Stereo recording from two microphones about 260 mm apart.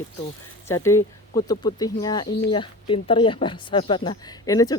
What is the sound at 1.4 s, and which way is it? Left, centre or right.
Speech, centre.